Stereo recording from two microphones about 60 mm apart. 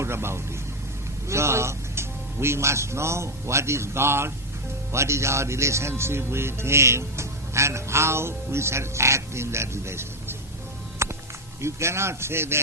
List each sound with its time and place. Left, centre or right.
0.0 s a man's voice: right
11.0 s music: right
11.6 s speech: right